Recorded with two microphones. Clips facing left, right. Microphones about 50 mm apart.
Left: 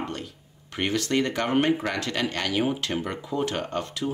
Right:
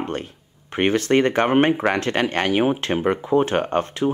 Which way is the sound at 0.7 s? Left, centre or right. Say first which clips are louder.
Right 7 dB; right.